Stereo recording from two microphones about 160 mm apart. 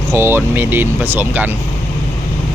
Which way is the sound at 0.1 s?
15° right (ahead or behind).